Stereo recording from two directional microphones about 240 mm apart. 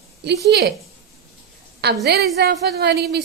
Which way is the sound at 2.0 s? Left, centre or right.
Right.